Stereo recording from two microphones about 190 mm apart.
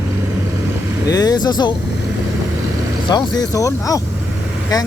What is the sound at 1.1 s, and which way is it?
Speech, 20° left (ahead or behind).